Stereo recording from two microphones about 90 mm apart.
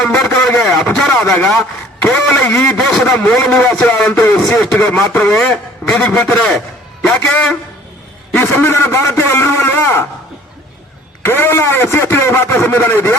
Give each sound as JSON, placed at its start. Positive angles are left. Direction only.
{"t": 0.0, "sound": "a sound", "side_deg": 5}
{"t": 0.9, "sound": "a man's voice", "side_deg": 5}
{"t": 8.4, "sound": "speech", "side_deg": 25}
{"t": 11.2, "sound": "speech", "side_deg": 25}